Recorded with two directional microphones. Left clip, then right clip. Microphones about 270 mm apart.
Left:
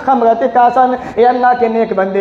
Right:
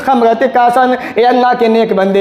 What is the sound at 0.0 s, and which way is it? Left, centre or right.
A man's voice, right.